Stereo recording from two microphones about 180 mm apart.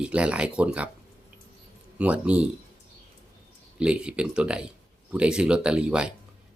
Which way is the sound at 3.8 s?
5° right (ahead or behind).